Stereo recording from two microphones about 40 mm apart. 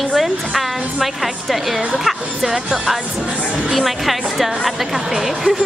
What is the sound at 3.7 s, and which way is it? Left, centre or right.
Speech, centre.